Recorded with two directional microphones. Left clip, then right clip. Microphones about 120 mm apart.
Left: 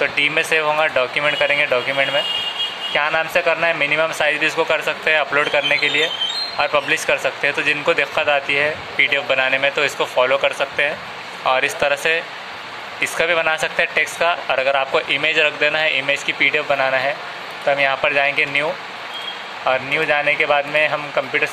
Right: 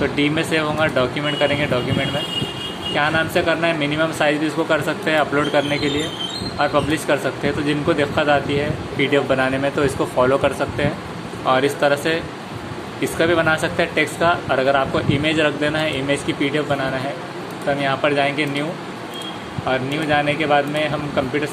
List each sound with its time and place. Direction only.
0.0 s speech: 35° left (ahead or behind); by 10.7 s 15° left (ahead or behind)
11.4 s speech: 30° left (ahead or behind)
19.7 s speech: 35° left (ahead or behind)